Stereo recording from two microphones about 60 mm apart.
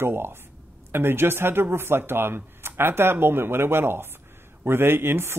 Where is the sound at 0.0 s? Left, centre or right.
Right.